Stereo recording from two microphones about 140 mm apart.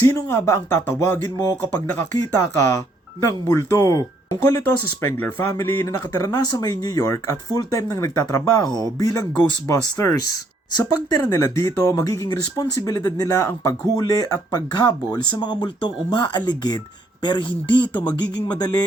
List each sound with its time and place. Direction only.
0.0 s speech: 20° left (ahead or behind)
5.1 s speech: 15° left (ahead or behind); by 18.8 s 30° left (ahead or behind)